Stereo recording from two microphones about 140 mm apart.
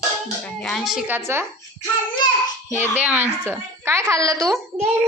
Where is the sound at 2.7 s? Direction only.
15° right (ahead or behind).